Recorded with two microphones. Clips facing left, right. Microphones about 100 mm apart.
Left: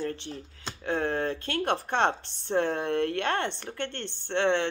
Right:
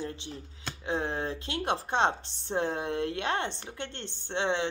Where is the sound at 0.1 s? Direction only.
55° left (ahead or behind).